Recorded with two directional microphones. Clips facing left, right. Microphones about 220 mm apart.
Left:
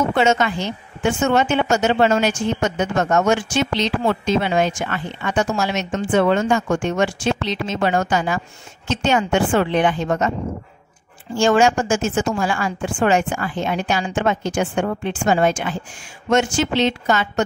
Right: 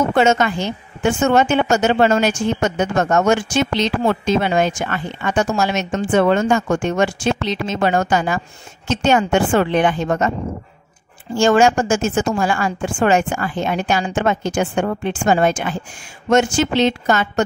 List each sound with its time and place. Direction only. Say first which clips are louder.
0.1 s a woman's voice: right 2 dB; 45° right (ahead or behind)
11.3 s a woman's voice: right 2 dB; 50° right (ahead or behind)